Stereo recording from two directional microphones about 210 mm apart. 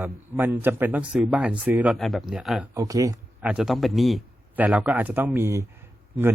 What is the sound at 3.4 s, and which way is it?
Speech, 5° right (ahead or behind).